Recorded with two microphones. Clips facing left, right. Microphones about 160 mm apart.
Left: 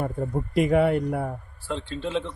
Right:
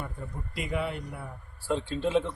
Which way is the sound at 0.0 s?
55° left (ahead or behind).